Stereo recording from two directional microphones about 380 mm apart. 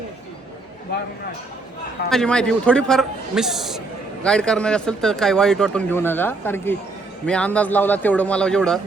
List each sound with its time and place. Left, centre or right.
2.0 s speech: centre